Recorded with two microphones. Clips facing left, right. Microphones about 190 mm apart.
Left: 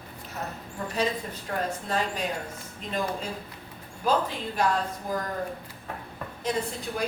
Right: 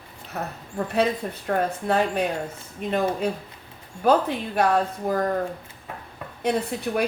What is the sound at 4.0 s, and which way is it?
Speech, 60° right (ahead or behind).